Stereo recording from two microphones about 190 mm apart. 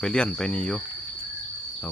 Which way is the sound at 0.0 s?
5° left (ahead or behind).